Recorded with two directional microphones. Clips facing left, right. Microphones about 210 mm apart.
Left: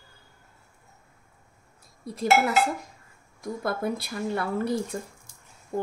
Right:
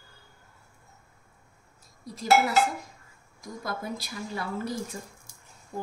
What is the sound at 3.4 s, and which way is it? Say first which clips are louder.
Speech: left 6 dB; 60° left (ahead or behind).